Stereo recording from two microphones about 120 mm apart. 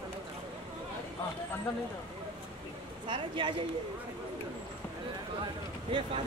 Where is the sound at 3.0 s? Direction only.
45° right (ahead or behind).